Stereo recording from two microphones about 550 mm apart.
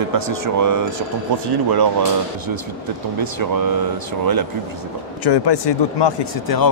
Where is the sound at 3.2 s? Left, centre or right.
Right.